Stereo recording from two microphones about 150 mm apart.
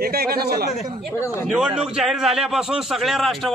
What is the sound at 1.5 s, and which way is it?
A man's voice, 5° right (ahead or behind).